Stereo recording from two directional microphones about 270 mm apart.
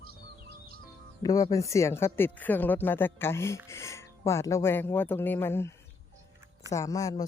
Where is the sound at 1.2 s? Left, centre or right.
Centre.